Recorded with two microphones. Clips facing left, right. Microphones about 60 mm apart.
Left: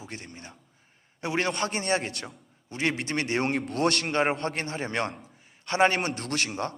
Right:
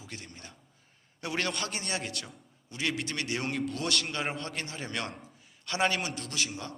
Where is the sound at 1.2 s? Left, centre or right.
Left.